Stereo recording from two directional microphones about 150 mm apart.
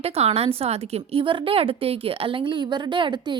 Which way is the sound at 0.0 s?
45° right (ahead or behind).